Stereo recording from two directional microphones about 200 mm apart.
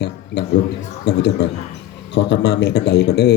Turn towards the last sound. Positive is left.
turn(degrees=55)  # may be behind; listen again after turning